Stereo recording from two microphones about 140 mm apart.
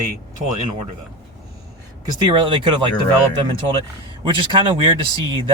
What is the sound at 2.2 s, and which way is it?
Speech, 35° right (ahead or behind).